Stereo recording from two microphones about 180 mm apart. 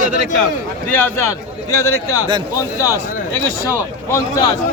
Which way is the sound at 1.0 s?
15° left (ahead or behind).